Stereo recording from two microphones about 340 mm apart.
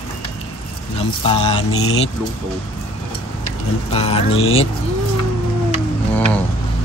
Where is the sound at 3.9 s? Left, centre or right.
Centre.